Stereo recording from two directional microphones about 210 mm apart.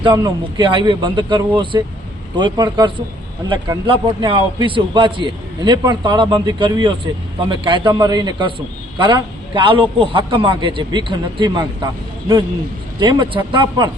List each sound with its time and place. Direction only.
0.0 s a man's voice: 20° right (ahead or behind)
13.0 s a man's voice: 20° right (ahead or behind)